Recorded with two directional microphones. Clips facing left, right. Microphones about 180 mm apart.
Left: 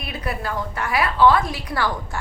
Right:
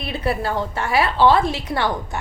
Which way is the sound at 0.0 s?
30° right (ahead or behind).